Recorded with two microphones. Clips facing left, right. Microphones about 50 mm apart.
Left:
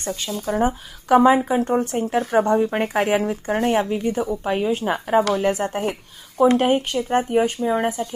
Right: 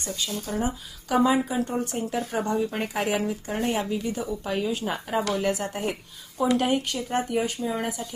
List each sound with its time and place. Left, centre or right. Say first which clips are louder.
0.3 s speech: left 9 dB; left